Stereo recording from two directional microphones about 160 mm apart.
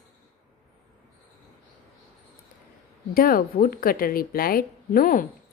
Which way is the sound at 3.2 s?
65° left (ahead or behind).